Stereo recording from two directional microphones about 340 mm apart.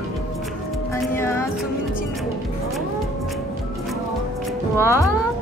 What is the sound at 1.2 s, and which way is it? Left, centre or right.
Music, centre.